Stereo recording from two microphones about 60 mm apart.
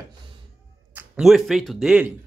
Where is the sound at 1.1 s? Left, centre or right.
Centre.